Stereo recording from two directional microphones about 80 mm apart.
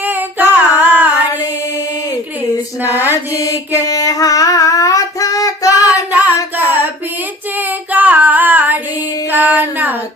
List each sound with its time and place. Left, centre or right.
0.0 s singing: right
2.8 s mantra: right
3.1 s carnatic music: left
6.1 s singing: right
7.9 s female singing: right
9.3 s a sound: right